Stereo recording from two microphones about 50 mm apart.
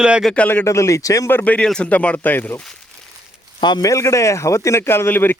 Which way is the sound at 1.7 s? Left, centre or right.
Left.